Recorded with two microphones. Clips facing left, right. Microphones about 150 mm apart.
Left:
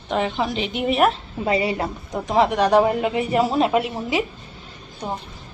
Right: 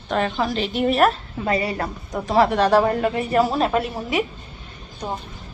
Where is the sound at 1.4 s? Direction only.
20° left (ahead or behind).